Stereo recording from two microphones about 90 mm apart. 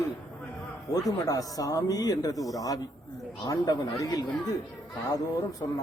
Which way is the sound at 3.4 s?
45° left (ahead or behind).